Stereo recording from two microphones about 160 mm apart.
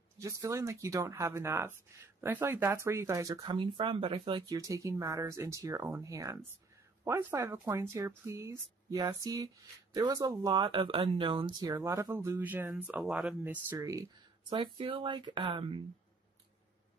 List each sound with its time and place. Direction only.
0.2 s speech: 20° right (ahead or behind)
3.3 s speech: 30° right (ahead or behind); by 13.4 s centre (ahead or behind)
13.4 s speech: 15° right (ahead or behind)
14.5 s speech: 30° right (ahead or behind)